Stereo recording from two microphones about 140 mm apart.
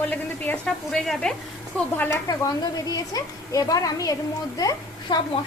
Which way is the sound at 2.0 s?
20° left (ahead or behind).